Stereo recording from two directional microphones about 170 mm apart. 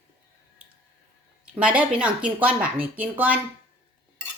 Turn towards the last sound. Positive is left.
turn(degrees=-10)  # may be behind; listen again after turning